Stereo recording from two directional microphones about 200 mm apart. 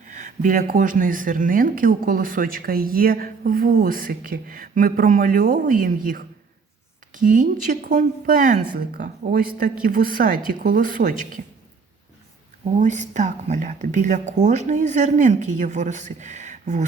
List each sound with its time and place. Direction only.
0.1 s a woman's voice: 35° right (ahead or behind)
12.7 s a woman's voice: 35° right (ahead or behind)